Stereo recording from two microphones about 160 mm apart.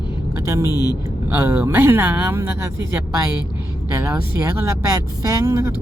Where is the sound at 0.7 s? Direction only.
20° left (ahead or behind).